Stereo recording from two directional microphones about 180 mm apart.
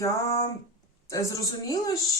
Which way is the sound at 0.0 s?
20° left (ahead or behind).